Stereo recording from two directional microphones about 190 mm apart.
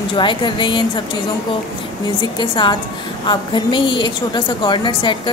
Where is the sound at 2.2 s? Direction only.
25° left (ahead or behind).